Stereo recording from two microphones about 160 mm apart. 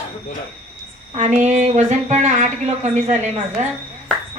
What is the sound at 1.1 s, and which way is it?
A woman's voice, 45° right (ahead or behind).